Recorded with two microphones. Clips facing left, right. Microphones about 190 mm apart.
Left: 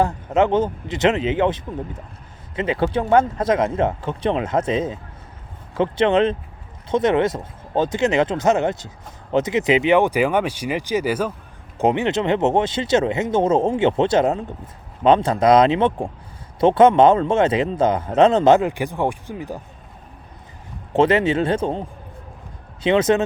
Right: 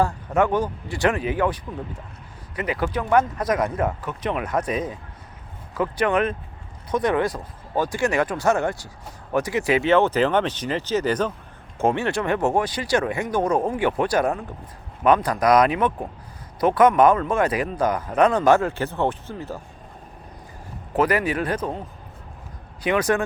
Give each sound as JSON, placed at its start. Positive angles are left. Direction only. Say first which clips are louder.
{"t": 0.0, "sound": "a man's voice", "louder": "left 3 dB", "side_deg": 20}
{"t": 11.8, "sound": "a man's voice", "louder": "left 3 dB", "side_deg": 20}
{"t": 20.9, "sound": "a man's voice", "louder": "left 5 dB", "side_deg": 25}